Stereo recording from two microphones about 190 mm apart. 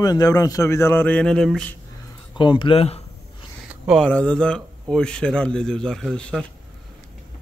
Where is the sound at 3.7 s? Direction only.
5° right (ahead or behind).